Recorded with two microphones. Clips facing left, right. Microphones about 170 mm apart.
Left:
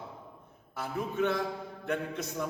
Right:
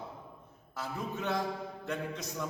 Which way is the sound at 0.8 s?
60° left (ahead or behind).